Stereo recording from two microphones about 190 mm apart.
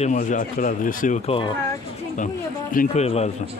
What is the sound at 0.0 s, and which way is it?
Speech, 40° left (ahead or behind).